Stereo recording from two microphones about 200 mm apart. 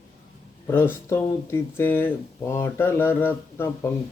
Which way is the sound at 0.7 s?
10° left (ahead or behind).